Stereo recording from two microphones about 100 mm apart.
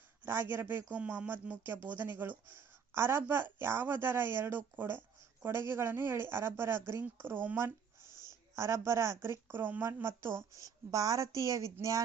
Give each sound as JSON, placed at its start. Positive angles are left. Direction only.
{"t": 0.3, "sound": "a woman's voice", "side_deg": -20}